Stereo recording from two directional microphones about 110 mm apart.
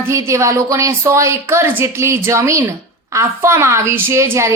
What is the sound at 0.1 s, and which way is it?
A woman's voice, 25° right (ahead or behind).